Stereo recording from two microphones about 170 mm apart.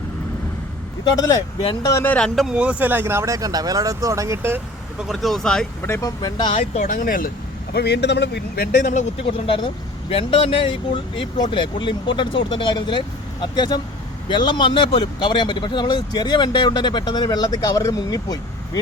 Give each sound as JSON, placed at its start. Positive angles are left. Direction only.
{"t": 1.6, "sound": "speech", "side_deg": 20}
{"t": 2.1, "sound": "speech", "side_deg": 0}
{"t": 5.8, "sound": "speech", "side_deg": 15}
{"t": 6.8, "sound": "speech", "side_deg": 55}
{"t": 7.7, "sound": "speech", "side_deg": 80}